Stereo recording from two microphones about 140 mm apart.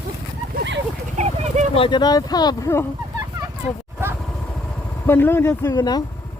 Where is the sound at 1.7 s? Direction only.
35° left (ahead or behind).